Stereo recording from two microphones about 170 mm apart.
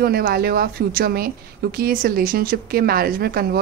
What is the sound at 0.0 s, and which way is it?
A woman's voice, 65° right (ahead or behind).